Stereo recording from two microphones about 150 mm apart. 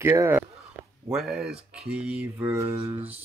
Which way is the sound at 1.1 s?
Centre (ahead or behind).